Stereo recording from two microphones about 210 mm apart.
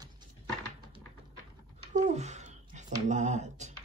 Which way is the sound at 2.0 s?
35° right (ahead or behind).